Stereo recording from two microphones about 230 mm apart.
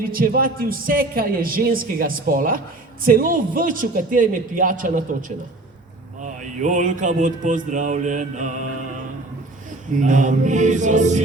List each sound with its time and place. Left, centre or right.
0.0 s a man's voice: right
6.2 s a man's voice: right
9.9 s a man's voice: right